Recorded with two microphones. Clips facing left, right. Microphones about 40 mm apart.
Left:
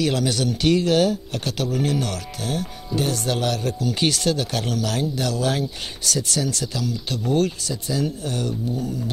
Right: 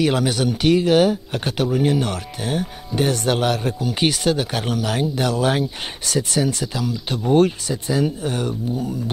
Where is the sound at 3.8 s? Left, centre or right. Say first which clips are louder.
Right 2 dB; centre.